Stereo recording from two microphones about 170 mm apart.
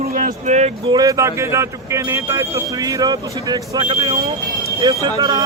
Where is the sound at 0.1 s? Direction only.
45° right (ahead or behind).